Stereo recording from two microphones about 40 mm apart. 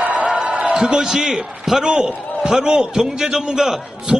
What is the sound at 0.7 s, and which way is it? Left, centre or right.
A man's voice, centre.